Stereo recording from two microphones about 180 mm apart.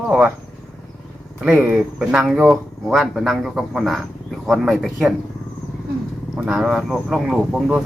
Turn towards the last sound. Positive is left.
turn(degrees=-5)  # may be behind; listen again after turning